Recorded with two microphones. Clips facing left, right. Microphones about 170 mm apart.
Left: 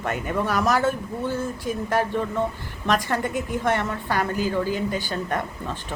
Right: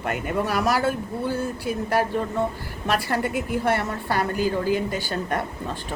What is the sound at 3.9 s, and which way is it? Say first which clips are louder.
Speech: even; 40° right (ahead or behind).